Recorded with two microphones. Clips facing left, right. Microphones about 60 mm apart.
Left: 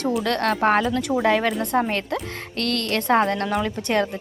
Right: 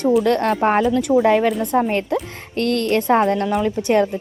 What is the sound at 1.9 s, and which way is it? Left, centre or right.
Speech, right.